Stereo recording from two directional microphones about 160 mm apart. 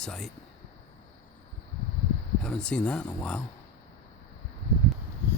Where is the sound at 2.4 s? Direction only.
5° left (ahead or behind).